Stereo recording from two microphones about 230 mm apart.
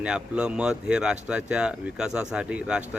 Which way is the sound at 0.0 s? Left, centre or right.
Centre.